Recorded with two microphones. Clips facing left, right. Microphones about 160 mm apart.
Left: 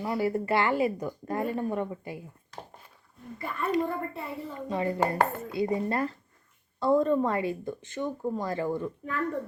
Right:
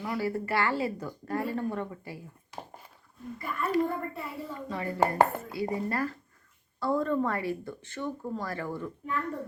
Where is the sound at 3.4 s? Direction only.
25° left (ahead or behind).